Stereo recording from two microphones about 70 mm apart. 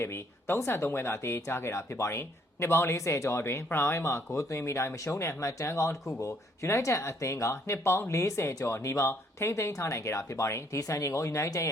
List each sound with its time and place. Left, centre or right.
0.0 s speech: left
7.5 s speech: left